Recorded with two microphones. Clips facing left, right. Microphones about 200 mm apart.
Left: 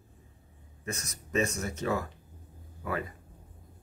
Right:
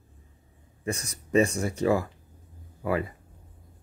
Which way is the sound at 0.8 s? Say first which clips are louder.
Right 6 dB; 30° right (ahead or behind).